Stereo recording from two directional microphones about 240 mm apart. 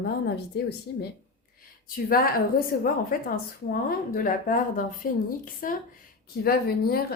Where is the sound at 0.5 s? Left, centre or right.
Left.